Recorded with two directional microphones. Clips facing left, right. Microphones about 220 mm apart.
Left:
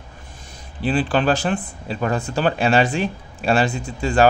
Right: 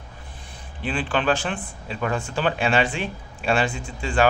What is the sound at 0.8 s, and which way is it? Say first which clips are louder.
A man's voice: left 4 dB; 40° left (ahead or behind).